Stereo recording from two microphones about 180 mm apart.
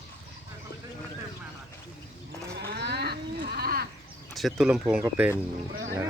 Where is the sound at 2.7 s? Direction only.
65° right (ahead or behind).